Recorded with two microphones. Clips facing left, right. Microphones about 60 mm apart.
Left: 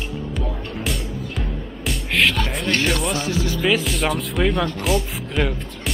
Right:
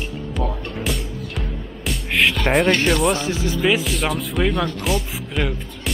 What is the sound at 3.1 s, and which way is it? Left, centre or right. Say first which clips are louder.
Speech: even; right.